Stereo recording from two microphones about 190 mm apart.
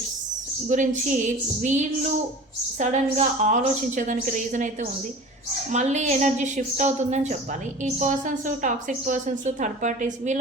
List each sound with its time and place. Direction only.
0.7 s a woman's voice: 40° right (ahead or behind)